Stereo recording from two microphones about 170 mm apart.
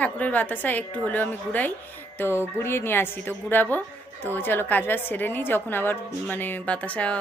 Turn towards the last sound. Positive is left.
turn(degrees=5)  # may be behind; listen again after turning